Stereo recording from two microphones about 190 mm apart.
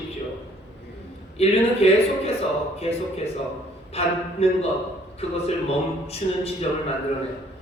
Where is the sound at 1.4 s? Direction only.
35° left (ahead or behind).